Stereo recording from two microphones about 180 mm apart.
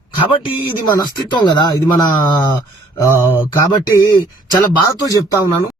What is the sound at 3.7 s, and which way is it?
Speech, 20° left (ahead or behind).